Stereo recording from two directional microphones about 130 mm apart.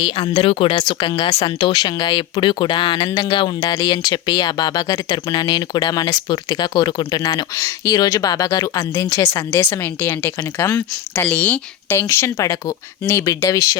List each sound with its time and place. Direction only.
0.0 s speech: 45° left (ahead or behind); by 13.7 s 25° left (ahead or behind)